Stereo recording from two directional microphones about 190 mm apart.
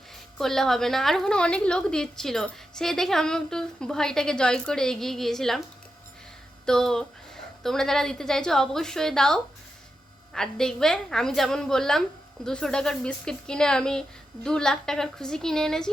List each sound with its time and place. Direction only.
0.3 s a woman's voice: centre (ahead or behind)
6.7 s a woman's voice: 5° left (ahead or behind)